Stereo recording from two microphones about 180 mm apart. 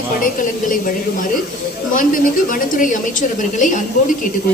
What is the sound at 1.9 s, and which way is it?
A woman's voice, 50° left (ahead or behind).